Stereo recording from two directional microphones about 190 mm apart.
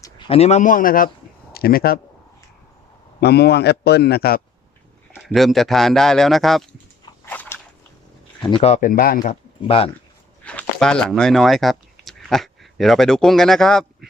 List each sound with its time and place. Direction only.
0.0 s a man's voice: 25° left (ahead or behind); by 2.0 s 50° left (ahead or behind)
3.2 s a man's voice: 60° left (ahead or behind)
5.1 s speech: centre (ahead or behind)
7.3 s biting: 10° left (ahead or behind)
8.4 s speech: 30° left (ahead or behind)
10.4 s speech: 5° left (ahead or behind)